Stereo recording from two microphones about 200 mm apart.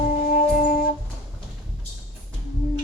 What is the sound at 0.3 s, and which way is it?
Music, 45° left (ahead or behind).